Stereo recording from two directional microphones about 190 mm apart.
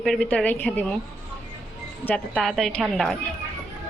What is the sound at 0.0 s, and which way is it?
Speech, 5° left (ahead or behind).